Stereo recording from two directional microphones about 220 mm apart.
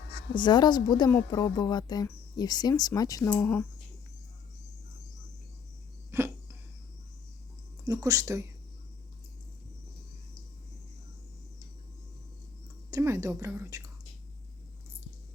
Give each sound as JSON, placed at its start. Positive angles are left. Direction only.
{"t": 0.3, "sound": "a woman's voice", "side_deg": 20}
{"t": 6.1, "sound": "cough", "side_deg": -10}
{"t": 7.9, "sound": "a woman's voice", "side_deg": -15}
{"t": 12.9, "sound": "a woman's voice", "side_deg": -15}